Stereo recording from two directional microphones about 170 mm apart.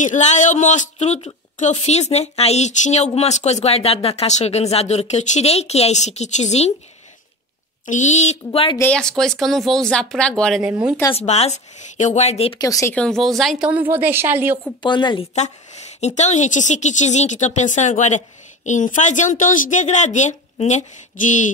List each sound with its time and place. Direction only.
0.0 s speech: 45° left (ahead or behind)
7.8 s a woman's voice: 45° left (ahead or behind)
8.5 s speech: 30° left (ahead or behind)
8.7 s speech: 10° left (ahead or behind)
11.1 s speech: 40° left (ahead or behind)
12.5 s speech: 20° left (ahead or behind)
12.9 s speech: 5° left (ahead or behind); by 14.6 s 10° right (ahead or behind)
14.8 s speech: 25° left (ahead or behind)
15.3 s a woman's voice: 40° left (ahead or behind)